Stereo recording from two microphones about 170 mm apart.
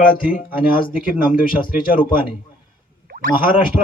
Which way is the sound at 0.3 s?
55° left (ahead or behind).